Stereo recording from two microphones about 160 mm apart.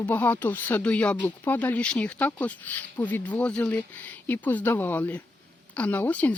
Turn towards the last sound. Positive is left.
turn(degrees=10)  # may be behind; listen again after turning